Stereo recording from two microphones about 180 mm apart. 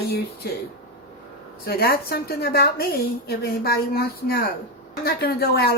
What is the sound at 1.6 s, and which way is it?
A woman's voice, 60° left (ahead or behind).